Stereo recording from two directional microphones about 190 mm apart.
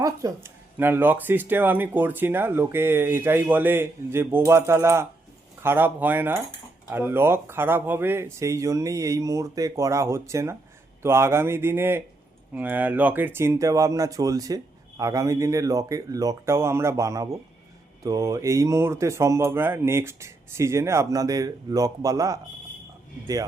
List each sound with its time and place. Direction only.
0.0 s speech: 15° right (ahead or behind)